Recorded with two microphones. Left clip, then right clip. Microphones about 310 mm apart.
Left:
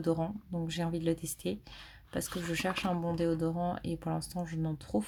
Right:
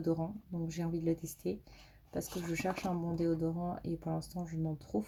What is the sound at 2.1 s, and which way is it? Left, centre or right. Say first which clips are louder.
Speech: left 3 dB; left.